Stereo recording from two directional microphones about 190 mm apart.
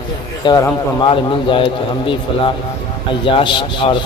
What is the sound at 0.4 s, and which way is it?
A man's voice, 25° left (ahead or behind).